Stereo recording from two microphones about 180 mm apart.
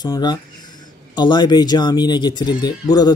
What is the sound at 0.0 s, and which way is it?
Speech, 20° left (ahead or behind).